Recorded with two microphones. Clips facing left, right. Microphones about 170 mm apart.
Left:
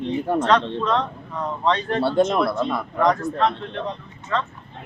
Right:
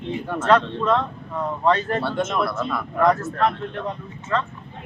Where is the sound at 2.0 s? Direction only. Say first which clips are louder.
Left 6 dB; 35° left (ahead or behind).